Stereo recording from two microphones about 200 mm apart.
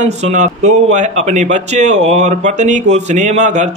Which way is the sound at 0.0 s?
35° right (ahead or behind).